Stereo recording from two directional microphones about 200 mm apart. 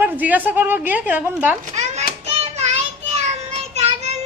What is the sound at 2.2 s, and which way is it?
Child singing, 30° right (ahead or behind).